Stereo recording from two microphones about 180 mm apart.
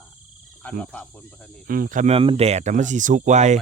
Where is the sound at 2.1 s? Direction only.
35° right (ahead or behind).